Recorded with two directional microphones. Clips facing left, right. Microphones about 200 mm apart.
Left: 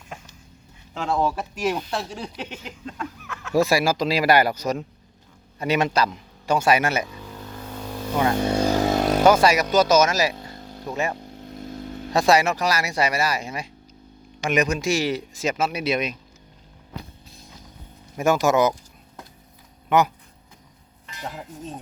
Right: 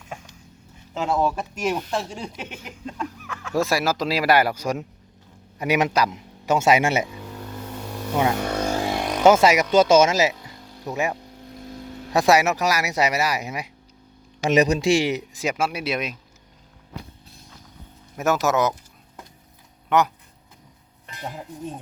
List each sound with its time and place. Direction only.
0.9 s speech: 5° right (ahead or behind)
3.5 s a man's voice: centre (ahead or behind); by 7.1 s 25° right (ahead or behind)
8.1 s speech: 10° right (ahead or behind)
8.4 s vehicle: 30° left (ahead or behind)
9.2 s a man's voice: 20° right (ahead or behind)
10.4 s vehicle: 20° right (ahead or behind)
12.3 s speech: 10° right (ahead or behind)
14.4 s speech: 35° right (ahead or behind); by 16.1 s 5° right (ahead or behind)
18.2 s speech: centre (ahead or behind)
19.9 s speech: centre (ahead or behind)